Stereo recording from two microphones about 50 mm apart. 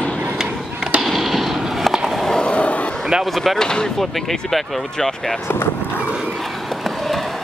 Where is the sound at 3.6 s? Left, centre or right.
Centre.